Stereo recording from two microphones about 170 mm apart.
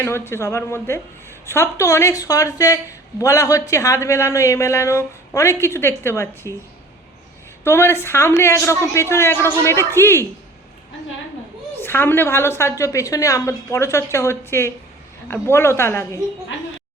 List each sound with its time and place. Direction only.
0.0 s a woman's voice: 15° left (ahead or behind)
7.6 s a woman's voice: 15° left (ahead or behind)
11.8 s a woman's voice: 10° left (ahead or behind)